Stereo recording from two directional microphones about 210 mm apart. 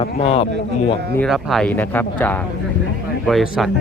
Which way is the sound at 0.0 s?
25° left (ahead or behind).